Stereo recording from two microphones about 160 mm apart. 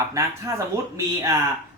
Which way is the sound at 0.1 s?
20° right (ahead or behind).